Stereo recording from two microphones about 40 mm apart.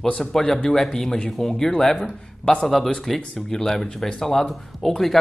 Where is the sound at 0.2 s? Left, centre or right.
Centre.